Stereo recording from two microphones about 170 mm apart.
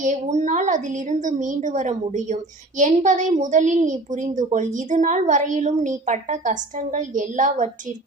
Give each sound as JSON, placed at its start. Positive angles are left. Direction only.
{"t": 0.0, "sound": "a woman's voice", "side_deg": -45}